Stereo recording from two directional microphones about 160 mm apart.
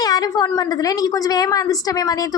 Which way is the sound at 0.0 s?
25° left (ahead or behind).